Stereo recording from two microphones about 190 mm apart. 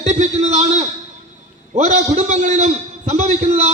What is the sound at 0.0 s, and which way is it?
A man's voice, 35° right (ahead or behind).